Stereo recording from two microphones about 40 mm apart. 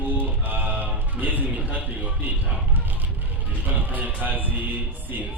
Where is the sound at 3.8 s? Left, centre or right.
Right.